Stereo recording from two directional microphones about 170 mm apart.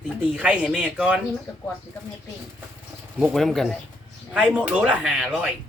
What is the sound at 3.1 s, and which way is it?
Speech, centre (ahead or behind).